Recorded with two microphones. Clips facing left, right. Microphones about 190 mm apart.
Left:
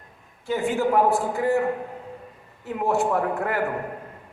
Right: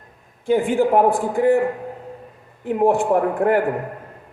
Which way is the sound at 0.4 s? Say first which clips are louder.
Right 6 dB; 50° right (ahead or behind).